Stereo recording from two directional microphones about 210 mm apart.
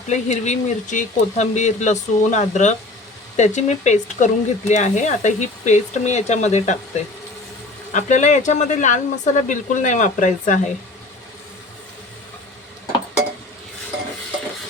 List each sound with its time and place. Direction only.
0.1 s speech: 35° left (ahead or behind)
7.9 s speech: 35° left (ahead or behind)